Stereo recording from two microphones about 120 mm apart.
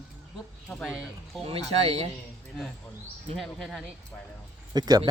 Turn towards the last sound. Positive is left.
turn(degrees=-35)  # may be behind; listen again after turning